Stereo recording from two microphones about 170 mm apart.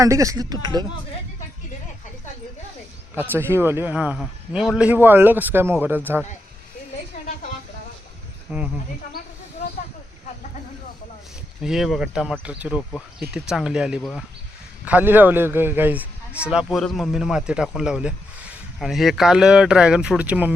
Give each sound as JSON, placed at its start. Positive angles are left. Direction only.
{"t": 0.0, "sound": "speech", "side_deg": -20}
{"t": 3.2, "sound": "a man's voice", "side_deg": -15}
{"t": 8.5, "sound": "a man's voice", "side_deg": -10}
{"t": 9.2, "sound": "snake", "side_deg": 60}
{"t": 11.6, "sound": "a man's voice", "side_deg": 0}